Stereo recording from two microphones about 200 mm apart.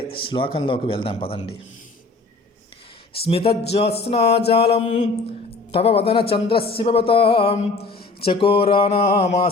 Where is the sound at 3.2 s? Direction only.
30° left (ahead or behind).